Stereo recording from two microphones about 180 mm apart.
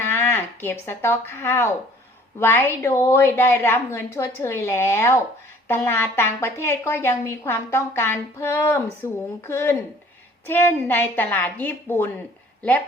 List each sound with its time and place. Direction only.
0.1 s a woman's voice: 10° left (ahead or behind)